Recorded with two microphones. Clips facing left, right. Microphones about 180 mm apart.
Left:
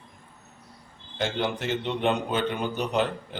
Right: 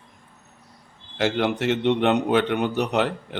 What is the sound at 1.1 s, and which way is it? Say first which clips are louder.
A man's voice: right 5 dB; 75° right (ahead or behind).